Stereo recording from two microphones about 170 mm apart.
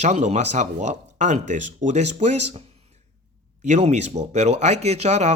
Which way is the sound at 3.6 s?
40° right (ahead or behind).